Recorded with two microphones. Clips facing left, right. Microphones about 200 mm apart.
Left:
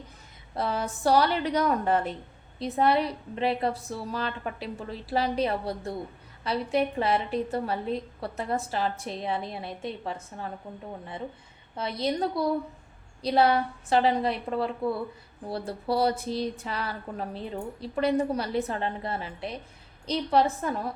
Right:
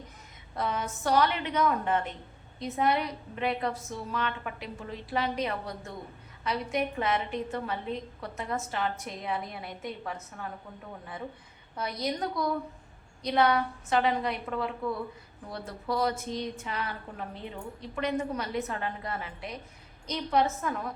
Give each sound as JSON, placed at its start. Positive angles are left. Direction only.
{"t": 0.5, "sound": "a woman's voice", "side_deg": 30}
{"t": 11.8, "sound": "a woman's voice", "side_deg": 25}